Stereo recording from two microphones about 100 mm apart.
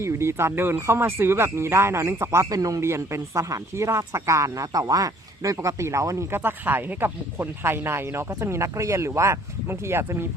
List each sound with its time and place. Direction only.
0.0 s speech: 25° right (ahead or behind)